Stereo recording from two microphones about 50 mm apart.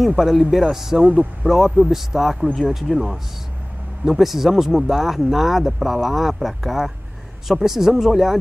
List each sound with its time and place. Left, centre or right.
0.0 s a man's voice: centre